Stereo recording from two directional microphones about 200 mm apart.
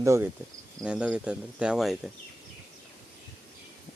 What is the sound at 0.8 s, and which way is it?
Speech, 5° right (ahead or behind).